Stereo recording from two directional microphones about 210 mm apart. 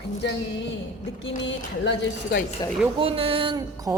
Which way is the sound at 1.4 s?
50° left (ahead or behind).